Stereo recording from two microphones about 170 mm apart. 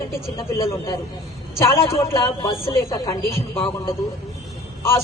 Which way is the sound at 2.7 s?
15° left (ahead or behind).